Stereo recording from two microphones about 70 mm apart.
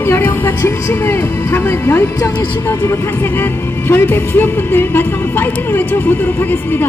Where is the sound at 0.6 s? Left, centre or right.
Left.